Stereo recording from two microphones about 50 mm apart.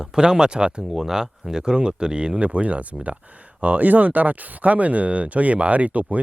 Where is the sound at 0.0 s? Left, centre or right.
Centre.